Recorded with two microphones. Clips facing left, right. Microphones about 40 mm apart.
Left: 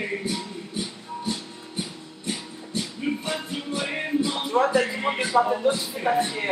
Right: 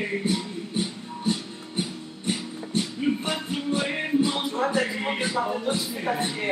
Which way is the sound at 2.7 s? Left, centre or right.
Right.